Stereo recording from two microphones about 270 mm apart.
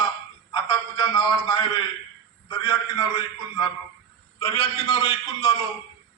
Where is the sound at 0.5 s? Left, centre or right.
Centre.